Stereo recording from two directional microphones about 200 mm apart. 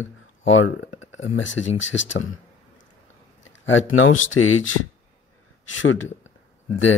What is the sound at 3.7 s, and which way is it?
Speech, 75° left (ahead or behind).